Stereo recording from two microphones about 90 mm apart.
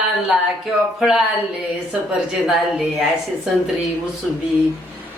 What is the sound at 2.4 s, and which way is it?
Speech, 5° right (ahead or behind).